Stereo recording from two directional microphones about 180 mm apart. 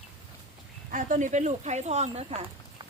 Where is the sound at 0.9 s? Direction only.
45° right (ahead or behind).